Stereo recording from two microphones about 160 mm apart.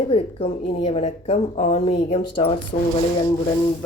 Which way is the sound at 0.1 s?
35° left (ahead or behind).